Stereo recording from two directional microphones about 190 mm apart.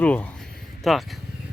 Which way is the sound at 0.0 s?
5° left (ahead or behind).